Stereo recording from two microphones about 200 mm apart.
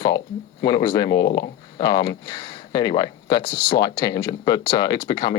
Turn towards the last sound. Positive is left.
turn(degrees=20)  # may be behind; listen again after turning